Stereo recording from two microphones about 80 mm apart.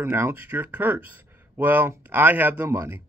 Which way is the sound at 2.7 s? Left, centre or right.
Right.